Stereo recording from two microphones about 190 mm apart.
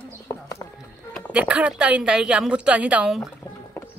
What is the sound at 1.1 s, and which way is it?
A woman's voice, 5° right (ahead or behind).